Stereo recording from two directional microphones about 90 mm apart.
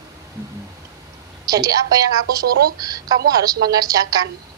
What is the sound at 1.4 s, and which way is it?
Speech, 45° right (ahead or behind).